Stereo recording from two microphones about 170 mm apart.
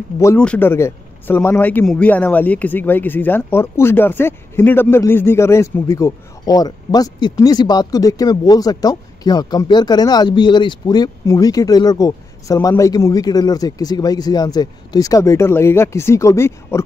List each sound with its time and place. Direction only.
0.4 s a man's voice: 10° left (ahead or behind)